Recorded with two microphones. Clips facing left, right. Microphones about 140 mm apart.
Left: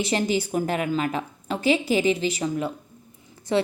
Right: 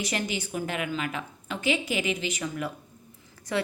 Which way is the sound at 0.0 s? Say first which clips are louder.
Left 7 dB; 30° left (ahead or behind).